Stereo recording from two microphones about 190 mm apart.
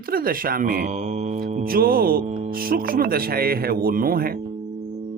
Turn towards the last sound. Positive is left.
turn(degrees=-50)  # may be behind; listen again after turning